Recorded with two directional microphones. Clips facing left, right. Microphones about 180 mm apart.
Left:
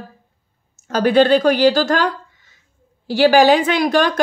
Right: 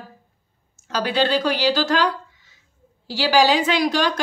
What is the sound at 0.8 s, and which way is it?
A woman's voice, 50° left (ahead or behind).